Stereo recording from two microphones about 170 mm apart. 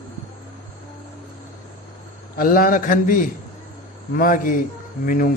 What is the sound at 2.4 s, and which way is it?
Speech, 55° left (ahead or behind).